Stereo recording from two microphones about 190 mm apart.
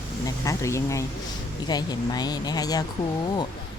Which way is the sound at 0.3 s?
15° left (ahead or behind).